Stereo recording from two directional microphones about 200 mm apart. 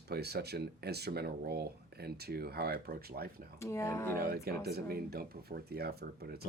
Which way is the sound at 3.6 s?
15° left (ahead or behind).